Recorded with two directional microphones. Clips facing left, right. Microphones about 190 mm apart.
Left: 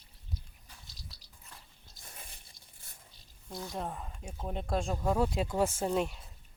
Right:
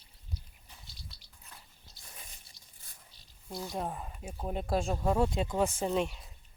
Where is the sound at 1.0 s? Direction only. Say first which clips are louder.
Even; 40° left (ahead or behind).